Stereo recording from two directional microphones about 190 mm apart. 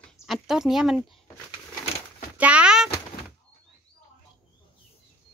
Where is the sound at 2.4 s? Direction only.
5° right (ahead or behind).